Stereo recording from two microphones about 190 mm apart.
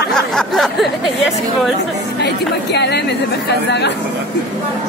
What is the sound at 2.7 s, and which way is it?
Speech, 60° left (ahead or behind).